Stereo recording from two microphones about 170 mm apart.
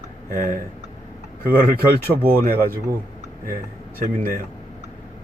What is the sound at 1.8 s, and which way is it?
Speech, 60° right (ahead or behind).